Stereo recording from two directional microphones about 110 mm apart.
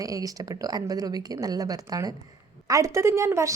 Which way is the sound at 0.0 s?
30° right (ahead or behind).